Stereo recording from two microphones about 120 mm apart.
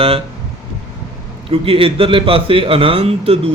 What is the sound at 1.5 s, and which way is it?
A man's voice, 50° right (ahead or behind).